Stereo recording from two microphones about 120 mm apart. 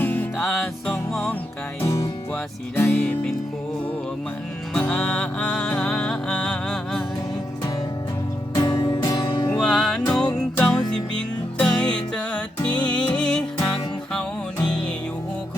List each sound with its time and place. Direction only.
0.0 s music: 15° left (ahead or behind)
0.3 s music: centre (ahead or behind)
1.8 s music: 25° left (ahead or behind)
4.7 s music: 10° left (ahead or behind)
8.5 s music: 35° left (ahead or behind)
9.5 s music: 5° left (ahead or behind)
10.1 s music: 35° left (ahead or behind)
10.3 s music: 5° left (ahead or behind)